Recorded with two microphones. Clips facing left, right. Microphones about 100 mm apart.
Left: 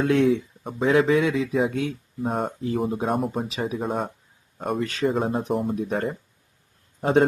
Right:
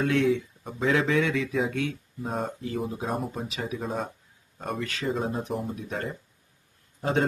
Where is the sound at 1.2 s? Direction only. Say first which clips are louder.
Left 3 dB; 15° left (ahead or behind).